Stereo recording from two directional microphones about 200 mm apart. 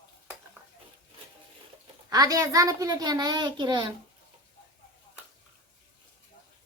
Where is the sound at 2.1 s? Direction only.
20° right (ahead or behind).